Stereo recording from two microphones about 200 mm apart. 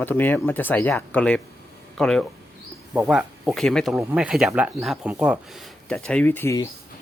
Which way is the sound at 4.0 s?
10° right (ahead or behind).